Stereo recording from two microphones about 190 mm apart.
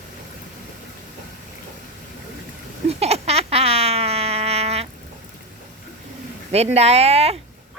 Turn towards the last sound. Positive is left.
turn(degrees=-30)  # may be behind; listen again after turning